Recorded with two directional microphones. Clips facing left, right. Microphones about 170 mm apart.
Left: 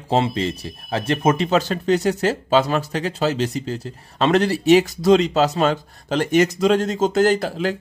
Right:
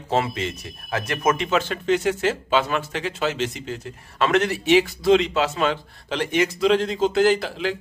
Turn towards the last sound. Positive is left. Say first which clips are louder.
# left 2 dB
turn(degrees=40)  # may be behind; listen again after turning